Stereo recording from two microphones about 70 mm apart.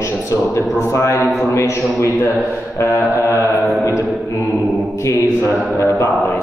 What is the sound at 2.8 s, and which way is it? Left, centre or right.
Mantra, left.